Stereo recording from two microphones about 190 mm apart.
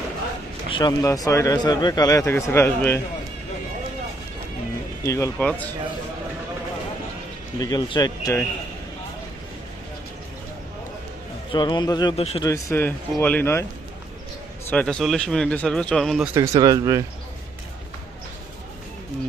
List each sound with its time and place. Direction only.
0.7 s speech: 20° left (ahead or behind)
5.0 s speech: 15° left (ahead or behind)
7.6 s speech: 20° left (ahead or behind)
11.5 s speech: 25° left (ahead or behind)
12.1 s a man's voice: 30° left (ahead or behind)
12.4 s speech: 15° left (ahead or behind)
14.7 s speech: 5° left (ahead or behind)
16.3 s speech: 15° right (ahead or behind)